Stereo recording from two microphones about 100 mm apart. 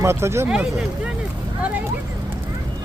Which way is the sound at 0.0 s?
25° right (ahead or behind).